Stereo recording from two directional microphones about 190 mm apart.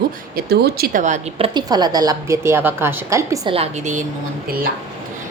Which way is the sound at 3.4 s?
30° right (ahead or behind).